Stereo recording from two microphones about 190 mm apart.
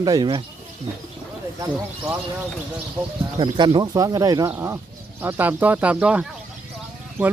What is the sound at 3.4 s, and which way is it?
Speech, 25° right (ahead or behind).